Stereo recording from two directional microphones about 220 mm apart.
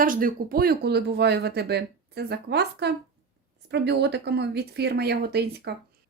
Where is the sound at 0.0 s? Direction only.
40° right (ahead or behind).